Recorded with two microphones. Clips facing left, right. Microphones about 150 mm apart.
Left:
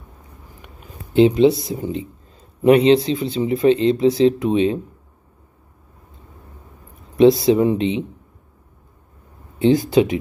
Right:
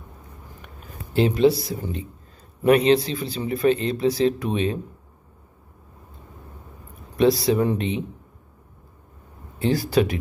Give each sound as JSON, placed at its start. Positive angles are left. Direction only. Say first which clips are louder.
{"t": 0.6, "sound": "a sound", "louder": "left 1 dB", "side_deg": 20}
{"t": 2.6, "sound": "speech", "louder": "left 4 dB", "side_deg": 25}
{"t": 7.2, "sound": "speech", "louder": "left 6 dB", "side_deg": 25}
{"t": 9.6, "sound": "speech", "louder": "left 6 dB", "side_deg": 25}